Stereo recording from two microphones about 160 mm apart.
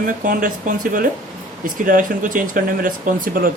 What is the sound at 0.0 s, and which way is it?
Speech, 60° right (ahead or behind).